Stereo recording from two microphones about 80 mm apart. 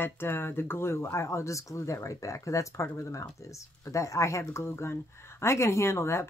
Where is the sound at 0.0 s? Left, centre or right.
Left.